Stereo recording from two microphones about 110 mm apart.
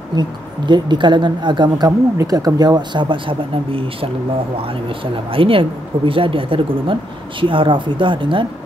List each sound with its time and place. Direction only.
0.1 s speech: 40° right (ahead or behind)
1.9 s speech: 30° right (ahead or behind); by 4.1 s 55° right (ahead or behind)
5.1 s speech: 55° right (ahead or behind)